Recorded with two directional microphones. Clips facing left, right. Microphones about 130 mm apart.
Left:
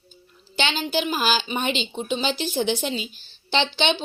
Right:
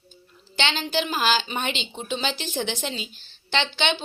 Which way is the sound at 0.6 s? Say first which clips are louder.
Left 1 dB; 10° left (ahead or behind).